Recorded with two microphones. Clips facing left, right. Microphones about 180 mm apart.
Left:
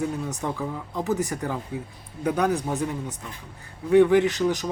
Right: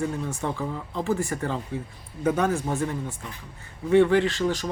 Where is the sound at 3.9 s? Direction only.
15° left (ahead or behind).